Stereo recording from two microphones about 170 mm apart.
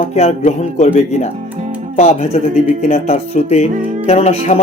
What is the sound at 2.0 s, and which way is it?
Speech, 40° left (ahead or behind).